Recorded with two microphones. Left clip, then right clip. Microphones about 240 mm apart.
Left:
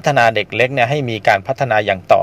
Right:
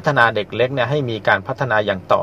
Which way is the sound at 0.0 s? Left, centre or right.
Left.